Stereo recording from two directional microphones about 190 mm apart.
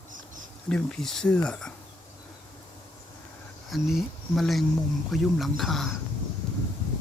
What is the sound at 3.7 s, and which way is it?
Speech, centre (ahead or behind).